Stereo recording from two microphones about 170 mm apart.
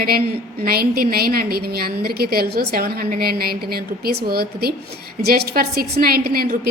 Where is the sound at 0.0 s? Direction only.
60° right (ahead or behind).